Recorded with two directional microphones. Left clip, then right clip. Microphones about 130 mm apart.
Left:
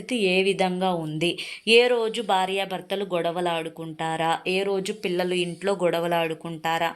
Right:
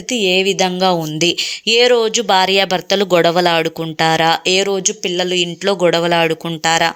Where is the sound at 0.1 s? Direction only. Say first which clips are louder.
Right 8 dB; 20° right (ahead or behind).